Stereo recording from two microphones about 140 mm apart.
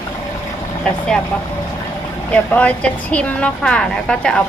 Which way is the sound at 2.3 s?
10° left (ahead or behind).